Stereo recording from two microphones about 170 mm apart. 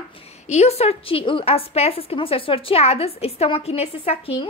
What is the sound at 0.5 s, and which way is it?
A woman's voice, 40° left (ahead or behind).